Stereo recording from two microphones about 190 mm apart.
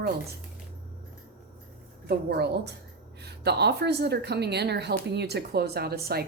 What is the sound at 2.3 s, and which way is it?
A woman's voice, 60° right (ahead or behind).